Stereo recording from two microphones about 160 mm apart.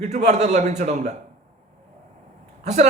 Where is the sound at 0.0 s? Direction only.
45° right (ahead or behind).